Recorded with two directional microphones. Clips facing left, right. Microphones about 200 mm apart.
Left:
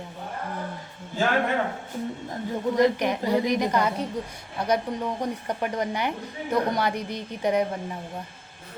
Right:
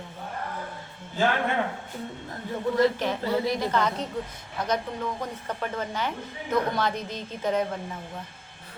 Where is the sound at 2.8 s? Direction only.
15° left (ahead or behind).